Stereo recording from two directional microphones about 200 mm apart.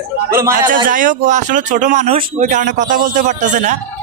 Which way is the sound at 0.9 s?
40° right (ahead or behind).